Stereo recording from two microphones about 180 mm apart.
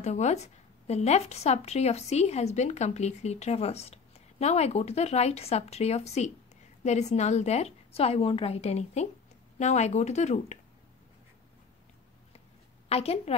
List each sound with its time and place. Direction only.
0.0 s a woman's voice: 40° left (ahead or behind)
12.8 s a woman's voice: 35° left (ahead or behind)